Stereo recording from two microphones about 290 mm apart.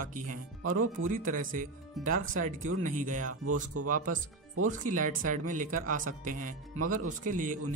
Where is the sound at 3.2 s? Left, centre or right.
Right.